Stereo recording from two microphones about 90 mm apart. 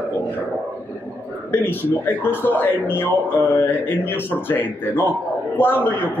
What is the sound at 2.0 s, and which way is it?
Speech, 25° left (ahead or behind).